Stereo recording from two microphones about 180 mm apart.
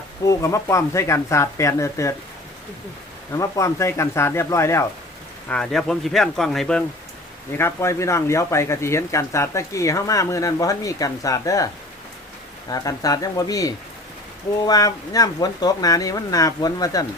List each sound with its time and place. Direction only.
0.3 s speech: 20° left (ahead or behind)
3.3 s speech: 20° left (ahead or behind)
5.5 s speech: 5° left (ahead or behind)
7.6 s speech: 15° left (ahead or behind)
12.7 s speech: 20° left (ahead or behind)